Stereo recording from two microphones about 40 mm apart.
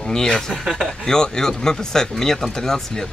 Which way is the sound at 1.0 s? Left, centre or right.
Centre.